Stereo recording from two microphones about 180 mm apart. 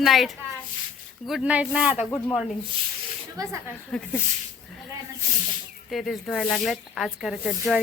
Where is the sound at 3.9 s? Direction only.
5° left (ahead or behind).